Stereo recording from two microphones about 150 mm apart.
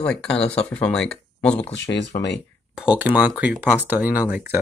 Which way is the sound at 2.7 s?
10° right (ahead or behind).